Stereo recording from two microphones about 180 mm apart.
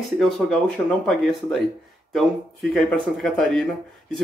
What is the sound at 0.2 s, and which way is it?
Speech, 5° left (ahead or behind).